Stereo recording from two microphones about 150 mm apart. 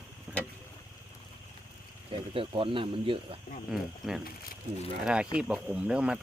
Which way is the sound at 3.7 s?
Centre (ahead or behind).